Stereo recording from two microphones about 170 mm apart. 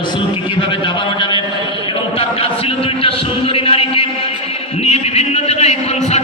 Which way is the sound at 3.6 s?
35° left (ahead or behind).